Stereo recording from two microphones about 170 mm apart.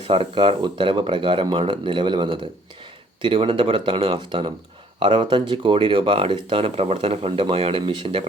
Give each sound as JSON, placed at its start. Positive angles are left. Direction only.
{"t": 0.0, "sound": "speech", "side_deg": -30}